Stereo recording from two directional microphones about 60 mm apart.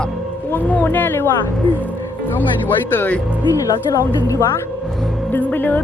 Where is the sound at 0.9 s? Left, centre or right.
Left.